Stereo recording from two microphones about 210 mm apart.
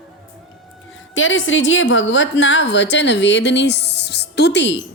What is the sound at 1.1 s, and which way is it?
A woman's voice, 65° left (ahead or behind).